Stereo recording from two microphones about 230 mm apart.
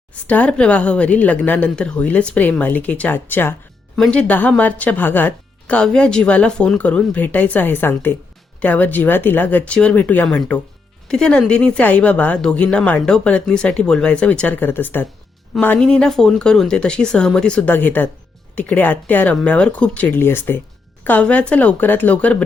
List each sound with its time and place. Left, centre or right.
0.1 s speech: centre